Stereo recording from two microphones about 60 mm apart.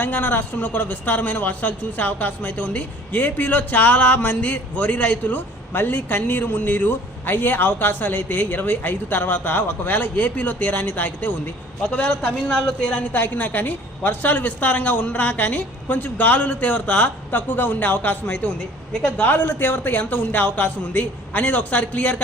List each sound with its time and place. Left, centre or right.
0.0 s speech: left
13.1 s speech: left
19.3 s speech: left